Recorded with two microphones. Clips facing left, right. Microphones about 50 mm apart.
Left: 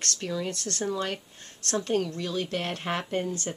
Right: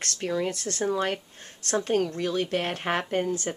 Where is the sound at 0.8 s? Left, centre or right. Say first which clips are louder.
Right 4 dB; right.